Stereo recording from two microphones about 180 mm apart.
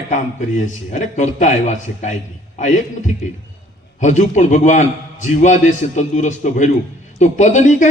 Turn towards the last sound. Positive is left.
turn(degrees=40)  # may be behind; listen again after turning